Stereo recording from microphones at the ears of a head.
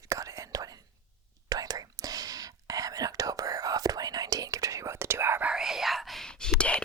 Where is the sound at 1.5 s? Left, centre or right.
Right.